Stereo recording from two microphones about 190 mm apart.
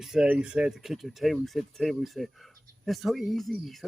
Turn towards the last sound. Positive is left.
turn(degrees=0)  # may be behind; listen again after turning